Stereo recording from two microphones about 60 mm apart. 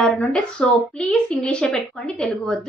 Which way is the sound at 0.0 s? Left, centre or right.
Centre.